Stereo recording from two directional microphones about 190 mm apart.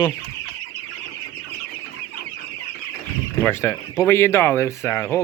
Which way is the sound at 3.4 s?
10° left (ahead or behind).